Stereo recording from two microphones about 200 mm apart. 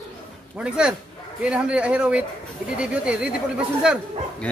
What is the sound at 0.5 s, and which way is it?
Speech, 5° right (ahead or behind).